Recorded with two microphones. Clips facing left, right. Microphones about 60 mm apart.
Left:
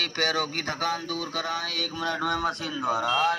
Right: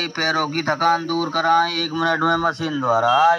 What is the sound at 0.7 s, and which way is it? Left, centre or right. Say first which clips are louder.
Speech: right 14 dB; right.